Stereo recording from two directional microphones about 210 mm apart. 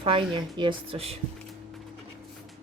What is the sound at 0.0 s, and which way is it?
Speech, 25° right (ahead or behind).